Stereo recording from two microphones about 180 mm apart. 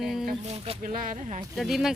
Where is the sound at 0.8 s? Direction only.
50° right (ahead or behind).